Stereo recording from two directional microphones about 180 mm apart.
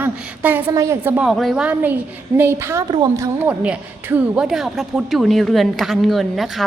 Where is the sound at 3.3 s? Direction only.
5° right (ahead or behind).